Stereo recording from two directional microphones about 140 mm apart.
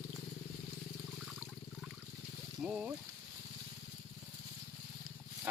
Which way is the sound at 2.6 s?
5° right (ahead or behind).